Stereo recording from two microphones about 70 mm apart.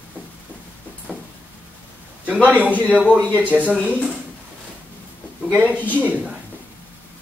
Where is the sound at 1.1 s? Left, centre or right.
Centre.